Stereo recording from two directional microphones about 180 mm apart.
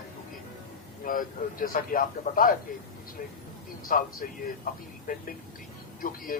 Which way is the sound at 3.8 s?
50° left (ahead or behind).